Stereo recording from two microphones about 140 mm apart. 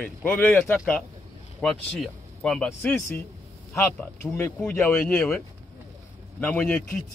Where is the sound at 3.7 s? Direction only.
15° left (ahead or behind).